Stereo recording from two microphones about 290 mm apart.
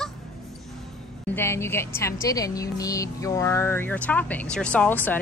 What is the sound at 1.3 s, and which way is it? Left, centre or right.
Speech, centre.